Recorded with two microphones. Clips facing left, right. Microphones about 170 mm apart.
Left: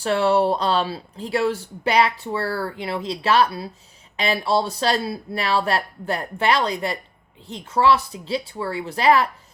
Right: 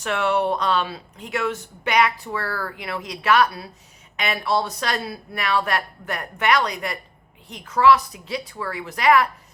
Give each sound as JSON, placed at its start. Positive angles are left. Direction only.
{"t": 0.0, "sound": "speech", "side_deg": 30}